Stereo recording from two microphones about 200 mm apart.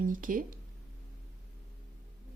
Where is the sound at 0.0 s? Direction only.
40° right (ahead or behind).